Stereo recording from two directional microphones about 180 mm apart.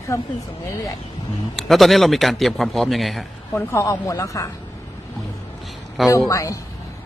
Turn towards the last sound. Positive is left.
turn(degrees=15)  # may be behind; listen again after turning